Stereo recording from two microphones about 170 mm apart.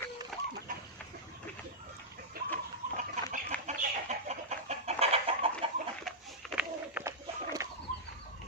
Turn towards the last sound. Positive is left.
turn(degrees=-15)  # may be behind; listen again after turning